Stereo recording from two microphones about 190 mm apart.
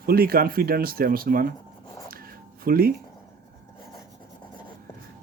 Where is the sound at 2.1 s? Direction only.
50° right (ahead or behind).